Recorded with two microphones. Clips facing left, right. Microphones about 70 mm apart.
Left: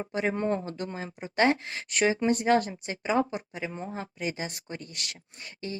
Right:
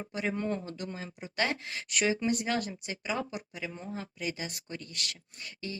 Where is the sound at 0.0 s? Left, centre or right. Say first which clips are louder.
Left 5 dB; left.